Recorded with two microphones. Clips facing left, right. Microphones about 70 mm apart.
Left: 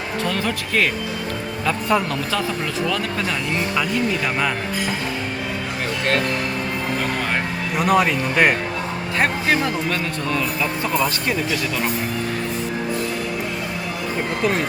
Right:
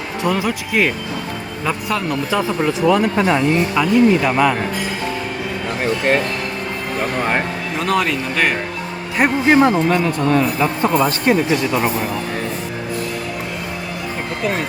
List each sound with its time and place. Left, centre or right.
0.2 s speech: centre
2.3 s speech: centre
3.8 s speech: centre
7.8 s speech: centre
9.1 s speech: centre
9.6 s speech: right